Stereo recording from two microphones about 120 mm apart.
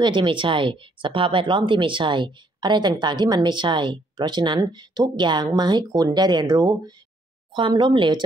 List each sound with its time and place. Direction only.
0.0 s speech: 45° right (ahead or behind)
7.5 s speech: 45° right (ahead or behind)